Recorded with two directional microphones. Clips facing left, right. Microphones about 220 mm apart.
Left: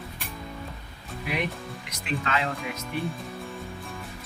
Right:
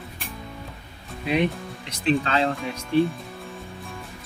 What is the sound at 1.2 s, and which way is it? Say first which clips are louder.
Speech: right 7 dB; 25° right (ahead or behind).